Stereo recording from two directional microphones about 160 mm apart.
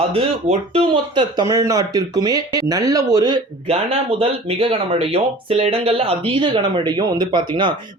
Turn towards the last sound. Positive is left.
turn(degrees=-30)  # may be behind; listen again after turning